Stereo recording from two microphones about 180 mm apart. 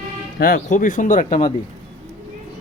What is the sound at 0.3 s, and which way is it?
Speech, 50° left (ahead or behind).